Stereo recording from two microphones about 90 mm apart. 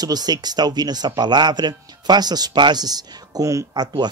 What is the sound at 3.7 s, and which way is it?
Speech, 50° right (ahead or behind).